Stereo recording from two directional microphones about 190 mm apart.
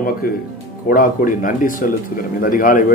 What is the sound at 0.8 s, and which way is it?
Speech, 50° left (ahead or behind).